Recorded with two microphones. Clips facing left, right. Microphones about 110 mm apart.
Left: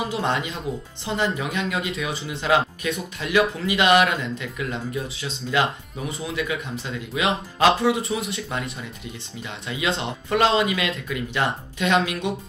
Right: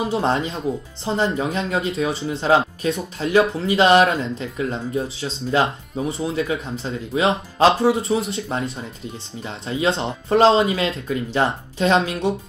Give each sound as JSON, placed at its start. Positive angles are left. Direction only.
{"t": 0.1, "sound": "speech", "side_deg": -35}